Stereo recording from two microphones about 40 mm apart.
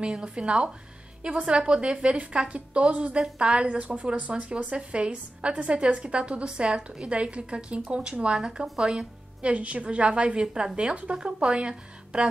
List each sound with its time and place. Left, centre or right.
0.0 s a woman's voice: right
9.4 s a woman's voice: right